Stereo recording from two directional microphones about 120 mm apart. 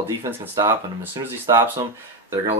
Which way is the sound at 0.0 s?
25° right (ahead or behind).